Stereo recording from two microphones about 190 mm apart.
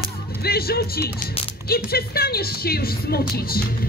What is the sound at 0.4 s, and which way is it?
A woman's voice, 55° left (ahead or behind).